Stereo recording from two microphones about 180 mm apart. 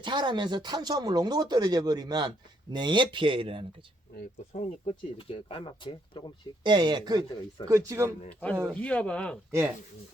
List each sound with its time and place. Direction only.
0.0 s speech: 25° right (ahead or behind)
4.5 s speech: 35° left (ahead or behind)
6.6 s speech: 25° right (ahead or behind)
8.3 s speech: 10° left (ahead or behind)
9.5 s speech: 15° right (ahead or behind)